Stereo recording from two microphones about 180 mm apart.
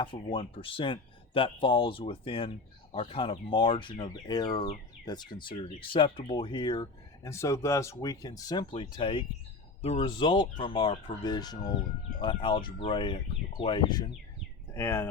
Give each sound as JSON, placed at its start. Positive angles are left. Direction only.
{"t": 0.0, "sound": "speech", "side_deg": 30}
{"t": 14.7, "sound": "speech", "side_deg": 10}